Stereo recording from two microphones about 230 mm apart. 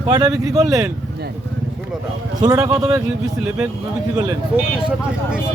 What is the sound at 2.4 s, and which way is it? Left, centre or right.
A man's voice, centre.